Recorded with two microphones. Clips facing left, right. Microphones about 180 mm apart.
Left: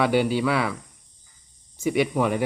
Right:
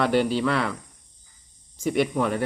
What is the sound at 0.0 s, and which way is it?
Speech, 5° left (ahead or behind).